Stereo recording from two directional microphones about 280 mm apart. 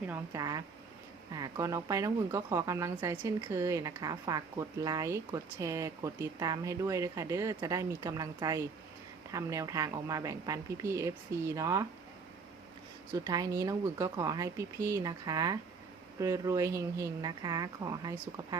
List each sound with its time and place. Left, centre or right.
0.1 s a woman's voice: centre
13.1 s a woman's voice: centre